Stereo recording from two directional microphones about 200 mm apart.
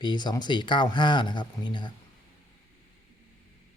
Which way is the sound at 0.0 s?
20° left (ahead or behind).